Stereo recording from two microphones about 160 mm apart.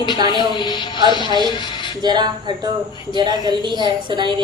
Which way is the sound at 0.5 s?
30° left (ahead or behind).